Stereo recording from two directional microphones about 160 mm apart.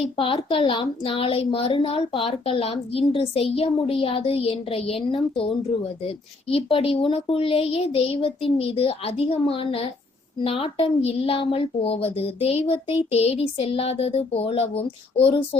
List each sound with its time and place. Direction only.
0.2 s a woman's voice: 35° left (ahead or behind)